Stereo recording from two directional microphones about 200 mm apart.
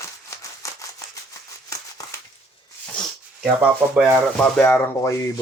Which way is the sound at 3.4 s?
5° right (ahead or behind).